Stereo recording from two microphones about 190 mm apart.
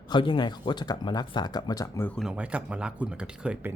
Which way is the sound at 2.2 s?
5° right (ahead or behind).